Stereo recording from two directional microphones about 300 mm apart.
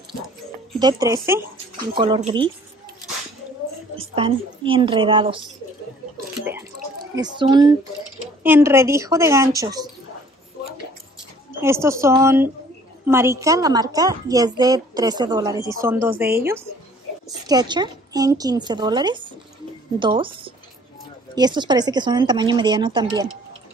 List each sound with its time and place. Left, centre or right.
0.7 s speech: centre
4.0 s a woman's voice: centre
7.2 s speech: centre
11.6 s speech: centre